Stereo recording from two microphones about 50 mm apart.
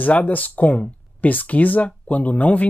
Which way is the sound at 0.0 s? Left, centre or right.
Left.